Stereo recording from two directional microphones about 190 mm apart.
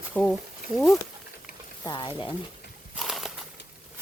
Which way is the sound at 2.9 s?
Centre (ahead or behind).